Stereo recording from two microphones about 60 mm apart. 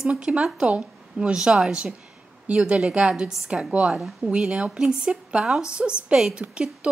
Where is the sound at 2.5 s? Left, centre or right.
Right.